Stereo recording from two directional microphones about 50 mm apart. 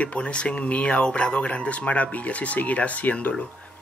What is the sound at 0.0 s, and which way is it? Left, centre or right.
Speech, left.